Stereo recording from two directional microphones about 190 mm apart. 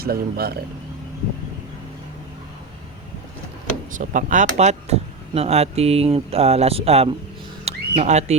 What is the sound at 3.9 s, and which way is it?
Speech, 40° right (ahead or behind).